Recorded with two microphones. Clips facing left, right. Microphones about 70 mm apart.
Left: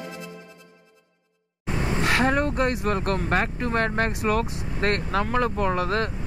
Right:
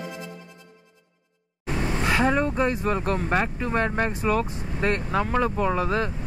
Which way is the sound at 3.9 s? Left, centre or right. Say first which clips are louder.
Even; centre.